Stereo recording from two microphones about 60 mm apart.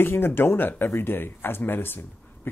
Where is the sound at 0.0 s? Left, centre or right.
Left.